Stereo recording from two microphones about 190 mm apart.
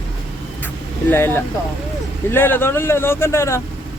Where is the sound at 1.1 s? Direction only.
10° left (ahead or behind).